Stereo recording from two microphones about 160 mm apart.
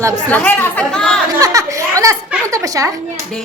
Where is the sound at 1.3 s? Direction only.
20° right (ahead or behind).